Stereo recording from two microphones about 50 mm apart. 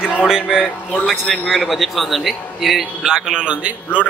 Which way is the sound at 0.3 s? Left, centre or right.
Centre.